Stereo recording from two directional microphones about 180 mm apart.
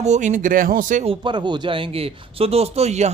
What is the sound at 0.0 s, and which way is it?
Speech, 40° right (ahead or behind).